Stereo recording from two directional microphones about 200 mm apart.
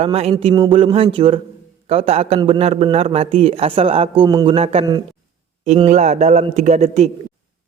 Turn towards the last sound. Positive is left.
turn(degrees=-35)  # may be behind; listen again after turning